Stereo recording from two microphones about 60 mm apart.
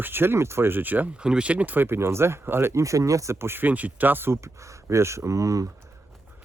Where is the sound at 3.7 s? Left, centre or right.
Right.